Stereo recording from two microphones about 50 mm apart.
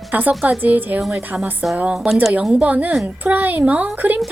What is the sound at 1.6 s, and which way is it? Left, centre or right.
A woman's voice, right.